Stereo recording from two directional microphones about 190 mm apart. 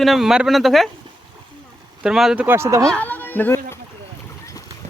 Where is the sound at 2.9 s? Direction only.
10° left (ahead or behind).